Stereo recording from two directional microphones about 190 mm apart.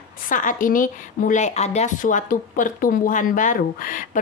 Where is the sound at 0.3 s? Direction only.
45° left (ahead or behind).